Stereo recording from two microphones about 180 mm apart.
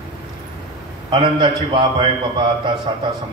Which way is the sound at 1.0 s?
25° right (ahead or behind).